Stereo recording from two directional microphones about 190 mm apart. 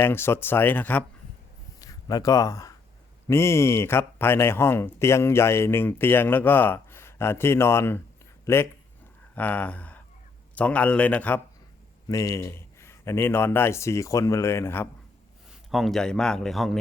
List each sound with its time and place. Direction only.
0.0 s a man's voice: 10° left (ahead or behind)
9.3 s a man's voice: 10° left (ahead or behind)
15.7 s a man's voice: centre (ahead or behind)